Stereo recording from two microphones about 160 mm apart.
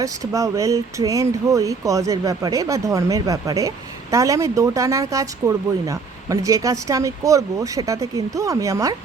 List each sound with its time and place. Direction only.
0.0 s speech: 20° right (ahead or behind)